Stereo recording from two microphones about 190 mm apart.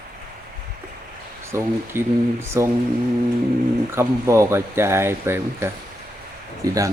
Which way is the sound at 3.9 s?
15° right (ahead or behind).